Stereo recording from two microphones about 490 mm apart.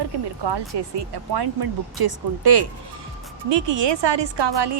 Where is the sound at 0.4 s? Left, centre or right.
Right.